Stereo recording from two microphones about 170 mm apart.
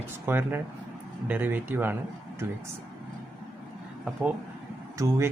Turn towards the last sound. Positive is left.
turn(degrees=-20)  # may be behind; listen again after turning